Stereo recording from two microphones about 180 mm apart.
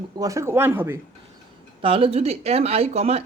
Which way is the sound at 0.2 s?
15° right (ahead or behind).